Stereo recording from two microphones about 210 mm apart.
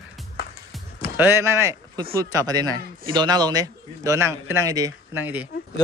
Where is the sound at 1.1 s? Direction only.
10° right (ahead or behind).